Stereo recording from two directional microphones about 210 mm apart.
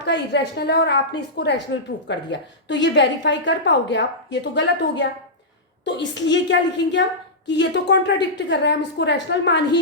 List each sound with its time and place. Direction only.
0.0 s a woman's voice: 55° left (ahead or behind)